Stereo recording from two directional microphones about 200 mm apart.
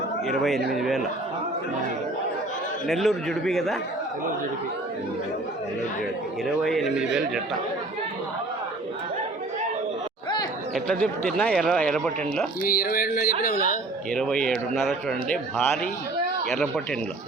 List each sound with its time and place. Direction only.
0.3 s speech: centre (ahead or behind)
2.8 s speech: centre (ahead or behind)
6.7 s speech: centre (ahead or behind)
10.8 s speech: 5° left (ahead or behind)
12.6 s speech: 45° left (ahead or behind)
14.1 s speech: 5° left (ahead or behind)